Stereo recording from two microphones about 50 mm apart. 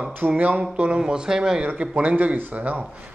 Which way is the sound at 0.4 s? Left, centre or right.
Right.